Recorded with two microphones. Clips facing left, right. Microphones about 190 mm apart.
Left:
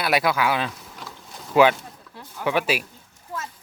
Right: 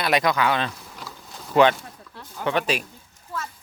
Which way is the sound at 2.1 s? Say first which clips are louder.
Left 1 dB; 10° left (ahead or behind).